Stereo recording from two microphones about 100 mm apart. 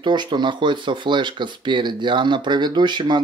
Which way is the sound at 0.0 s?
50° right (ahead or behind).